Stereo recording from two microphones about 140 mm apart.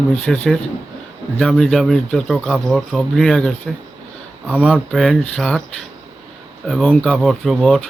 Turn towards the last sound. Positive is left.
turn(degrees=0)  # may be behind; listen again after turning